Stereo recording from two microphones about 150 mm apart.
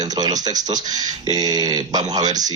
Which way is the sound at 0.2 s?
25° right (ahead or behind).